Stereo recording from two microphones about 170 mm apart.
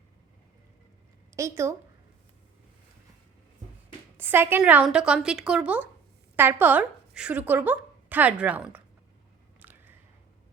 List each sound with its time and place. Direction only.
1.4 s a woman's voice: 15° right (ahead or behind)
4.2 s a woman's voice: 10° right (ahead or behind)
9.6 s a sound: 10° right (ahead or behind)